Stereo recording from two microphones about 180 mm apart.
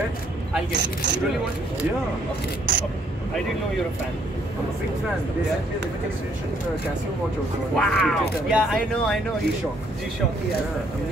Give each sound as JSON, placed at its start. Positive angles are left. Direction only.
{"t": 0.7, "sound": "speech", "side_deg": -75}
{"t": 7.7, "sound": "speech", "side_deg": 5}